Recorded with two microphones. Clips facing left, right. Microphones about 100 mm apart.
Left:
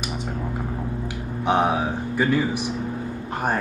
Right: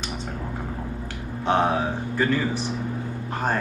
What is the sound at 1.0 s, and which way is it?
Speech, 15° left (ahead or behind).